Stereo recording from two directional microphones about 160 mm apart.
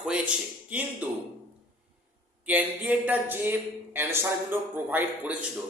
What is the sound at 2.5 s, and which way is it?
Speech, 10° right (ahead or behind).